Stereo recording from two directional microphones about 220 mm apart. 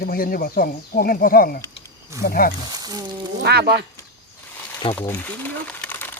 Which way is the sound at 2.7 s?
15° right (ahead or behind).